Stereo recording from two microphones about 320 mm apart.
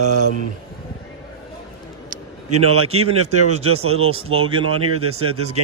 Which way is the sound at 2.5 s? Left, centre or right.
Right.